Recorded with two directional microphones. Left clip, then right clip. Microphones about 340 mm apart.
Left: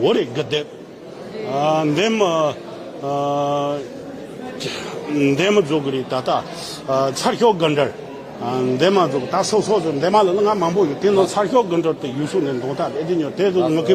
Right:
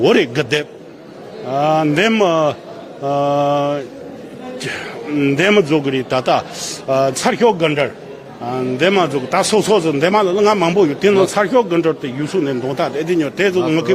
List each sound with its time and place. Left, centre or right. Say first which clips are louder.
0.0 s mantra: right 5 dB; right
1.5 s a man's voice: right 3 dB; centre
3.1 s mantra: right 5 dB; centre
5.1 s a man's voice: right 3 dB; centre
9.5 s mantra: right 5 dB; right
10.1 s a man's voice: right 1 dB; centre